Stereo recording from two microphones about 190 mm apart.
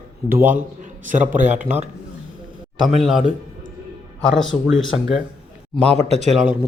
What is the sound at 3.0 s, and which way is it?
A man's voice, centre (ahead or behind).